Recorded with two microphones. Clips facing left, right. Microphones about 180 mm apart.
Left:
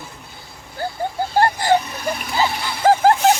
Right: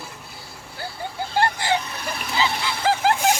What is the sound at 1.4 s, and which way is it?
Vehicle, 45° left (ahead or behind).